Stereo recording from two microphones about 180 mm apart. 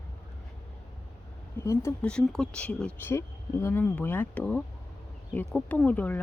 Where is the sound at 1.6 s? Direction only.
15° left (ahead or behind).